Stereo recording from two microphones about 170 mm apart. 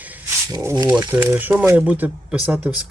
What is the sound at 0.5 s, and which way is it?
Speech, 20° right (ahead or behind).